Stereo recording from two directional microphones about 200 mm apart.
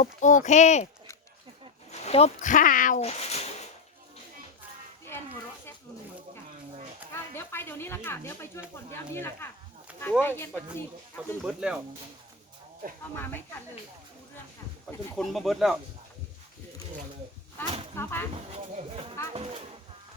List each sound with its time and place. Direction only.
0.0 s speech: 40° left (ahead or behind)
1.9 s speech: 30° left (ahead or behind)
7.3 s speech: 10° left (ahead or behind)
11.4 s speech: 5° right (ahead or behind)
14.8 s speech: centre (ahead or behind)
17.9 s speech: 10° left (ahead or behind)
18.5 s speech: 30° right (ahead or behind)